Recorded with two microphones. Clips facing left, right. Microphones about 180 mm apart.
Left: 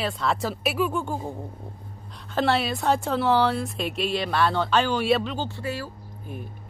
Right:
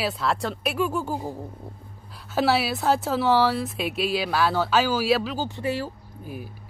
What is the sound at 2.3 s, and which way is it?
Speech, 5° right (ahead or behind).